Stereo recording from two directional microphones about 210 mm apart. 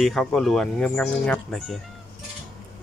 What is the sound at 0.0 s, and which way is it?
Speech, centre (ahead or behind).